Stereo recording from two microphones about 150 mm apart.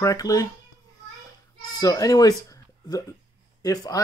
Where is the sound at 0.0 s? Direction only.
20° left (ahead or behind).